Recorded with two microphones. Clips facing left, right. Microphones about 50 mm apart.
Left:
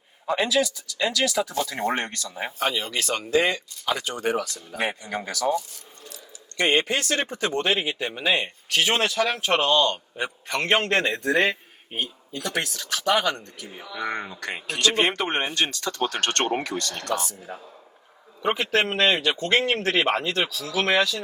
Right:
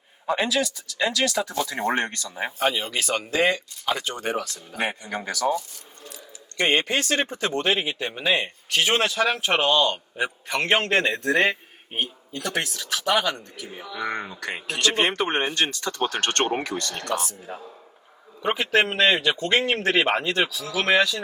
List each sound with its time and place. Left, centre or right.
0.3 s speech: centre; by 4.6 s right
5.1 s speech: centre
6.6 s speech: right
9.3 s a man's voice: centre
15.0 s speech: right
17.5 s a man's voice: centre
20.8 s speech: centre